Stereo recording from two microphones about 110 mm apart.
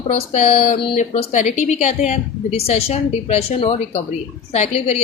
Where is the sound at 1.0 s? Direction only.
90° left.